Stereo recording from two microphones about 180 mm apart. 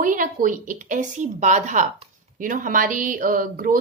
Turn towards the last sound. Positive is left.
turn(degrees=-50)  # may be behind; listen again after turning